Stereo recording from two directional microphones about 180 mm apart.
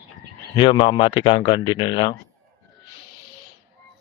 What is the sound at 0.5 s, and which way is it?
Speech, 25° left (ahead or behind).